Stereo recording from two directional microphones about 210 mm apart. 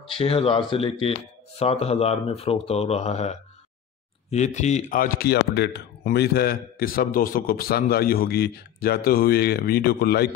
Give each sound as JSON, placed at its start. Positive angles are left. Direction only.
{"t": 0.2, "sound": "speech", "side_deg": 25}